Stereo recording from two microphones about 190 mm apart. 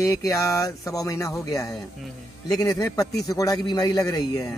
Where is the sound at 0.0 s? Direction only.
15° left (ahead or behind).